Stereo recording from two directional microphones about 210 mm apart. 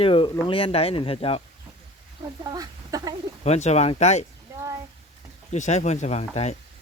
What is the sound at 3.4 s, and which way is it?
Speech, 30° left (ahead or behind).